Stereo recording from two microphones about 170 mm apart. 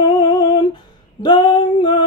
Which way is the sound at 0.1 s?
25° left (ahead or behind).